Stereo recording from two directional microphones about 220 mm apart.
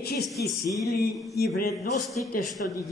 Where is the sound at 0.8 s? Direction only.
45° left (ahead or behind).